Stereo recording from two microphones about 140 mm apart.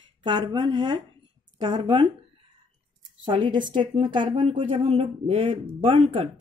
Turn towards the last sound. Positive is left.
turn(degrees=-45)  # may be behind; listen again after turning